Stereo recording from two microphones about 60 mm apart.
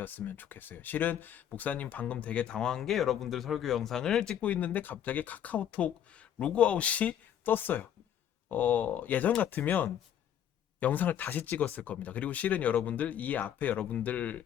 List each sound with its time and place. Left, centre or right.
0.0 s speech: left; by 4.4 s centre
4.4 s speech: left